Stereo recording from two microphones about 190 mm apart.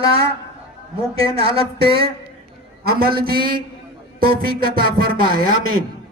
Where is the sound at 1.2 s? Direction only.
30° right (ahead or behind).